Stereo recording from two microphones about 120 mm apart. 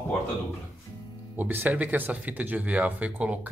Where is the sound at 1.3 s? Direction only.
15° right (ahead or behind).